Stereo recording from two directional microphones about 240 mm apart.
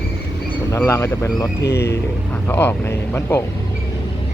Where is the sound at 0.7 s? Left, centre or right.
Centre.